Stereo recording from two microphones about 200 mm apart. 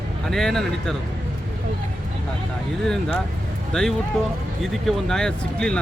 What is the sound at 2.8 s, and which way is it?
Speech, centre (ahead or behind).